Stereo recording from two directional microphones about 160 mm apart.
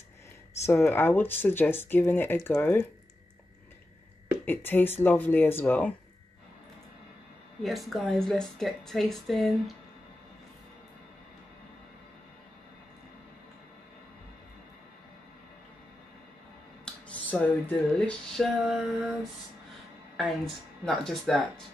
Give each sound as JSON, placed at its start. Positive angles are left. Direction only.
{"t": 0.7, "sound": "speech", "side_deg": 15}
{"t": 4.5, "sound": "speech", "side_deg": 15}
{"t": 7.6, "sound": "speech", "side_deg": 0}
{"t": 16.8, "sound": "speech", "side_deg": 10}
{"t": 20.2, "sound": "speech", "side_deg": 0}